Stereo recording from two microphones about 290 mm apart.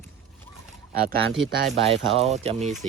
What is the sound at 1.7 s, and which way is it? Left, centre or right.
Speech, right.